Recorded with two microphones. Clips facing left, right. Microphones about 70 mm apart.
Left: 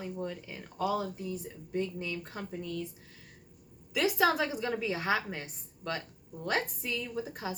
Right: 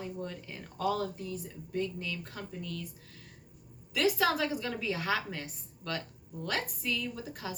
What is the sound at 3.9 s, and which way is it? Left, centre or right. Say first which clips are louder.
A woman's voice: left 1 dB; centre.